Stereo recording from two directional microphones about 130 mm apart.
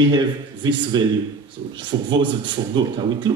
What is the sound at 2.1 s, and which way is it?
Speech, 35° right (ahead or behind).